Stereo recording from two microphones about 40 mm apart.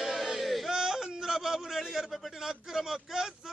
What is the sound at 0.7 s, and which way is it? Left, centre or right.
Yodeling, centre.